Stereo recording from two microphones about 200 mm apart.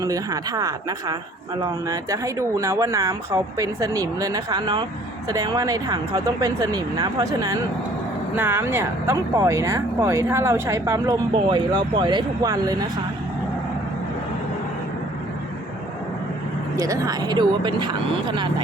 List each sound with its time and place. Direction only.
0.0 s speech: 15° right (ahead or behind)
16.7 s speech: 15° right (ahead or behind)